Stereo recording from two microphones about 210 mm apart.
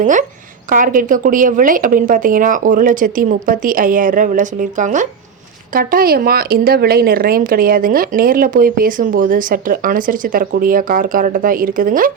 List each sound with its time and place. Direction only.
0.0 s speech: 35° right (ahead or behind)